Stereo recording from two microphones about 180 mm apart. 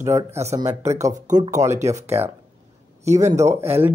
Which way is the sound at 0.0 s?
15° right (ahead or behind).